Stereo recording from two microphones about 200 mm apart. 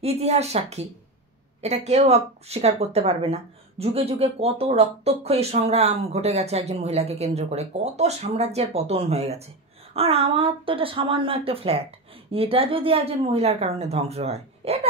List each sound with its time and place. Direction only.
0.0 s speech: 30° right (ahead or behind)